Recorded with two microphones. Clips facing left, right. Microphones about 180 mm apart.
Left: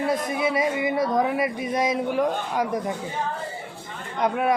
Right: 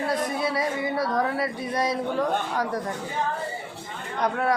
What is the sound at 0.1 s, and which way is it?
Speech, 20° left (ahead or behind).